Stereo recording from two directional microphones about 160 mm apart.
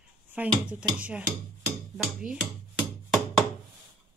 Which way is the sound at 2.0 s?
5° right (ahead or behind).